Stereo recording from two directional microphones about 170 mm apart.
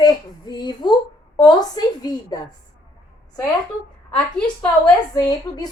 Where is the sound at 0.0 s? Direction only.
25° left (ahead or behind).